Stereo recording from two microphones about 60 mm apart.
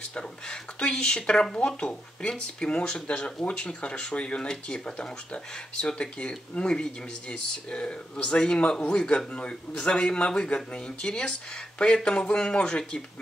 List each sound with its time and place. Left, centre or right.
0.0 s speech: centre